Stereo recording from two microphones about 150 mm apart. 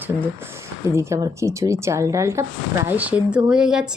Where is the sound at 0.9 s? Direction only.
20° right (ahead or behind).